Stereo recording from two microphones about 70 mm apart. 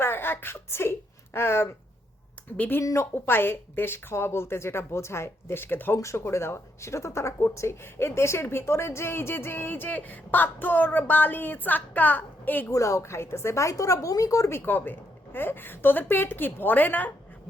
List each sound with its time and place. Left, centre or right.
0.0 s a sound: left
2.6 s a woman's voice: left
2.8 s a woman's voice: left
3.2 s speech: left
6.0 s speech: left
12.7 s a woman's voice: left
14.5 s a woman's voice: left